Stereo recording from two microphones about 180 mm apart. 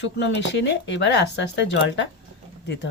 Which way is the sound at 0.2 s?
75° left (ahead or behind).